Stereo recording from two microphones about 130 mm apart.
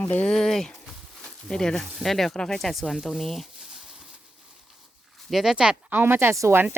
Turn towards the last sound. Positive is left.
turn(degrees=-20)  # may be behind; listen again after turning